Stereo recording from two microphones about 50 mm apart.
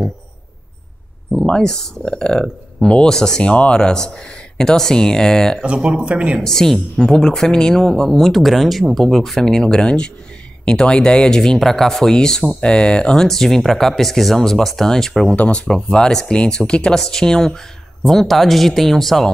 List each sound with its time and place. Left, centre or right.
1.6 s speech: centre
5.6 s speech: right
6.4 s speech: centre
15.3 s speech: left; by 19.3 s centre